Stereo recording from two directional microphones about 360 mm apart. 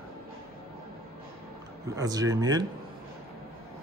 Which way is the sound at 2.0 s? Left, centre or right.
Centre.